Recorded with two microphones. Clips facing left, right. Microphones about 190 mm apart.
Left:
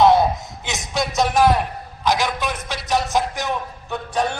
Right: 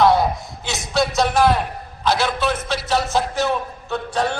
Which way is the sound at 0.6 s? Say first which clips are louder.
Right 4 dB; 20° left (ahead or behind).